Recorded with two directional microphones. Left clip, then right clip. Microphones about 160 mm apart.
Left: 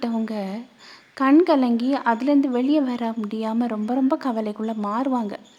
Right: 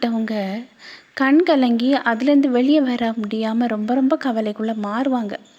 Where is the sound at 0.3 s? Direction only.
10° right (ahead or behind).